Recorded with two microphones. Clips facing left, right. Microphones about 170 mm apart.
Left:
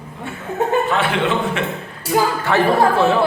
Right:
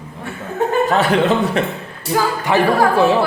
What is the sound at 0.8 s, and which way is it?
Speech, 40° right (ahead or behind).